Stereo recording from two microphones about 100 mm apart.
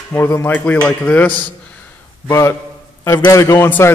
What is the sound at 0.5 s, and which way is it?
Speech, 15° left (ahead or behind).